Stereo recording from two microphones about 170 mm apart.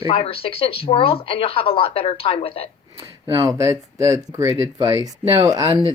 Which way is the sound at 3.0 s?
20° right (ahead or behind).